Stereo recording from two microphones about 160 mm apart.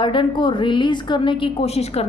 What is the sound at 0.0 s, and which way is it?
A woman's voice, 30° left (ahead or behind).